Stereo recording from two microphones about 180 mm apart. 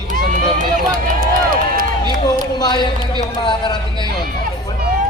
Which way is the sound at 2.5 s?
25° left (ahead or behind).